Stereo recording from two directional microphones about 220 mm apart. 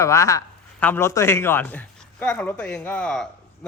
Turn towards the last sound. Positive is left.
turn(degrees=5)  # may be behind; listen again after turning